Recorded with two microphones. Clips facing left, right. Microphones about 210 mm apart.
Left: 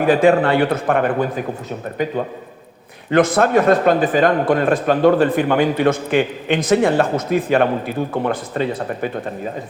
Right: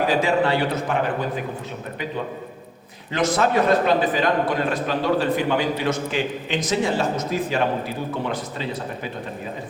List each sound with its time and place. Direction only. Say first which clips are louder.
0.1 s a man's voice: left 6 dB; 55° left (ahead or behind)